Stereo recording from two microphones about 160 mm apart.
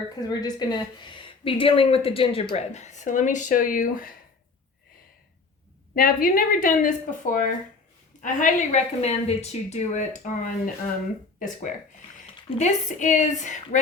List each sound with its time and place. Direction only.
0.2 s a woman's voice: 25° left (ahead or behind); by 4.1 s 60° left (ahead or behind)
5.9 s a woman's voice: 60° left (ahead or behind)